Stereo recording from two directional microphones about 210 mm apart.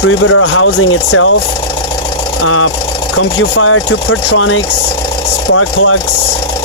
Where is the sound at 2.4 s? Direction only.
80° left.